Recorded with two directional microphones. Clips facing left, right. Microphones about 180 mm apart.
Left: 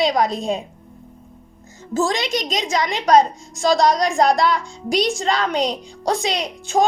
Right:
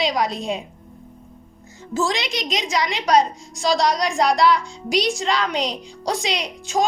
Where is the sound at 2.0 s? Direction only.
45° left (ahead or behind).